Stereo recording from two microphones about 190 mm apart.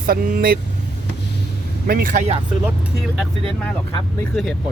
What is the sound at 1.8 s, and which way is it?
Speech, 50° right (ahead or behind).